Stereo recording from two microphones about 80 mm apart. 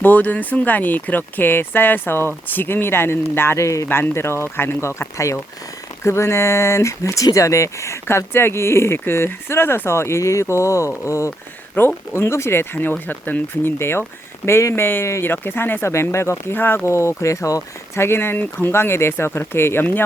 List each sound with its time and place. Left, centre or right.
0.0 s speech: left
11.8 s speech: left